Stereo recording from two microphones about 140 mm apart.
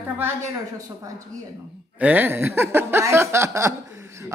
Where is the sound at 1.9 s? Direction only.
10° right (ahead or behind).